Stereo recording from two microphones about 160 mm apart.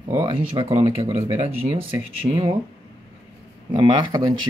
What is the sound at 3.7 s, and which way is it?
Speech, 30° right (ahead or behind).